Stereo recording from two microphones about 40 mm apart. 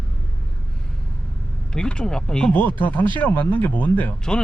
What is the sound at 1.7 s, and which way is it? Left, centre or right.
Speech, centre.